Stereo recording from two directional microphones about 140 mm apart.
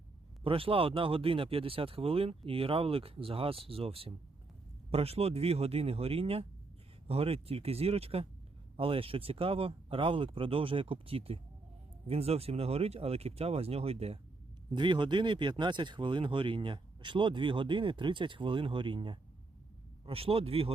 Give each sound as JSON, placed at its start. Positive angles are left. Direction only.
{"t": 0.4, "sound": "speech", "side_deg": -40}
{"t": 14.8, "sound": "speech", "side_deg": -35}